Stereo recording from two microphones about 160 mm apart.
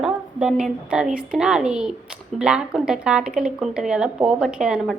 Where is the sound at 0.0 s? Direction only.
5° right (ahead or behind).